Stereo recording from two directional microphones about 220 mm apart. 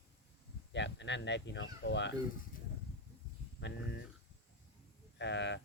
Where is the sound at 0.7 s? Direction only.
55° left (ahead or behind).